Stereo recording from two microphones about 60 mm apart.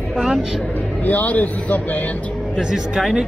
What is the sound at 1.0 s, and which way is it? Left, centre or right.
Speech, left.